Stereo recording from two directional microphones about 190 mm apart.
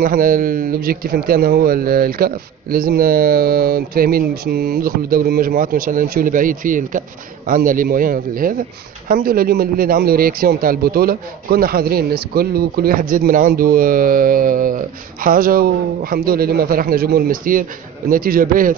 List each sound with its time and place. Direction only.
0.0 s a man's voice: 45° right (ahead or behind)